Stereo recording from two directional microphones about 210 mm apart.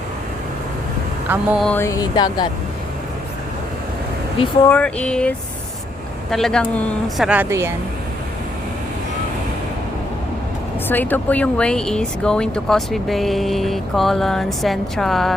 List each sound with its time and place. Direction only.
1.3 s speech: 5° right (ahead or behind)
1.6 s speech: 10° left (ahead or behind)
4.7 s speech: 5° left (ahead or behind)
6.3 s speech: centre (ahead or behind)
7.3 s speech: 10° right (ahead or behind)
10.8 s speech: 10° left (ahead or behind)